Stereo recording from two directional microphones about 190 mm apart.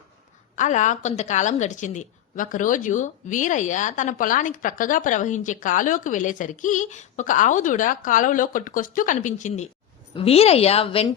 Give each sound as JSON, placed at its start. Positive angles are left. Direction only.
{"t": 0.5, "sound": "a woman's voice", "side_deg": 40}